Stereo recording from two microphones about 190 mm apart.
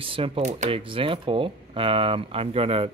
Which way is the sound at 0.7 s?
25° right (ahead or behind).